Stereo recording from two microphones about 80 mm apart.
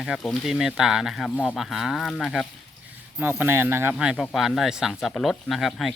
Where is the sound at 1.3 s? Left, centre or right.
Centre.